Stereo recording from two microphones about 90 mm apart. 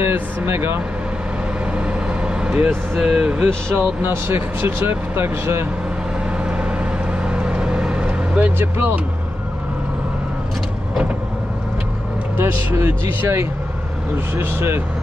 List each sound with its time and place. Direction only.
0.0 s speech: 30° right (ahead or behind)
1.7 s vehicle: 10° right (ahead or behind)
3.0 s speech: 10° right (ahead or behind)
3.4 s speech: 25° right (ahead or behind)
6.3 s vehicle: 10° right (ahead or behind)
12.4 s speech: 25° right (ahead or behind)